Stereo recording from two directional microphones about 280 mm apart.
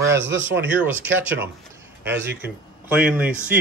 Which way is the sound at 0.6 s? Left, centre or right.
Centre.